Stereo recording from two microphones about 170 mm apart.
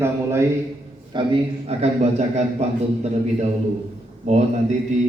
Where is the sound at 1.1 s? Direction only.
30° right (ahead or behind).